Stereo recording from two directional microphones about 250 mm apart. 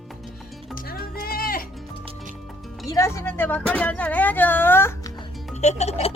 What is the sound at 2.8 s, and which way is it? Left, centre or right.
Speech, centre.